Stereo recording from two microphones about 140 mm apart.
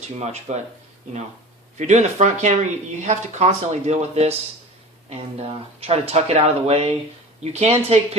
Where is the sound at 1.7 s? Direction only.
55° right (ahead or behind).